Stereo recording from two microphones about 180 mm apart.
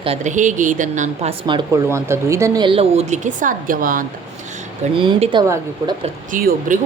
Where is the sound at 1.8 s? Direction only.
15° right (ahead or behind); by 4.1 s 50° right (ahead or behind).